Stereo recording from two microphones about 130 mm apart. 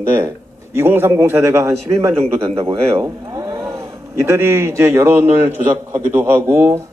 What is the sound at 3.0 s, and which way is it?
A man's voice, 25° right (ahead or behind).